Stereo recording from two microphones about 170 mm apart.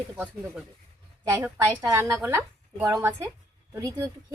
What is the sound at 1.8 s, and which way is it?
A woman's voice, 20° right (ahead or behind).